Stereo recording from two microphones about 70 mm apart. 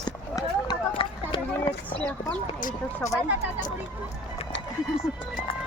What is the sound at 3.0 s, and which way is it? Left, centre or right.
Speech, left.